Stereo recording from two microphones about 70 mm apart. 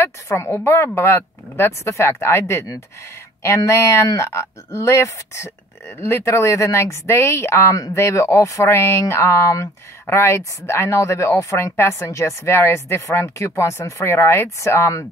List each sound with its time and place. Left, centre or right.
0.0 s speech: left